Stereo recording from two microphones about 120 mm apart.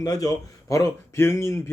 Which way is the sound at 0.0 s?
30° left (ahead or behind).